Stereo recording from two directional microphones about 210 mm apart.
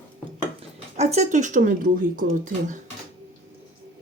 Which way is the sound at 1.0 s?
30° right (ahead or behind).